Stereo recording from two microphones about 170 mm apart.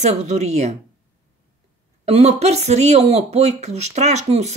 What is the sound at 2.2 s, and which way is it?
Speech, 40° right (ahead or behind).